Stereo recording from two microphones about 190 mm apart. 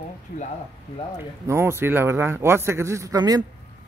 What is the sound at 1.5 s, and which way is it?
A man's voice, 15° right (ahead or behind).